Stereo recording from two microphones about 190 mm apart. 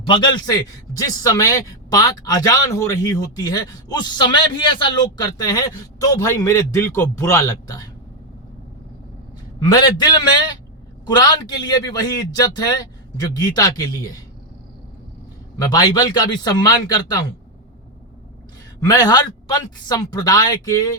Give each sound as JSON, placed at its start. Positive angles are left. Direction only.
{"t": 0.0, "sound": "speech", "side_deg": 25}
{"t": 9.7, "sound": "speech", "side_deg": 20}
{"t": 15.5, "sound": "speech", "side_deg": 20}
{"t": 18.9, "sound": "speech", "side_deg": 20}